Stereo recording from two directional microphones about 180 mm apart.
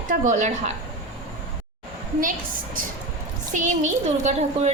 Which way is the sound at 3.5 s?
45° right (ahead or behind).